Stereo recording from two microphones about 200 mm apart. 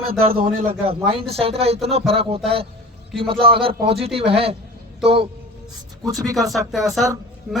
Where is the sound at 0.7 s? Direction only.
30° right (ahead or behind).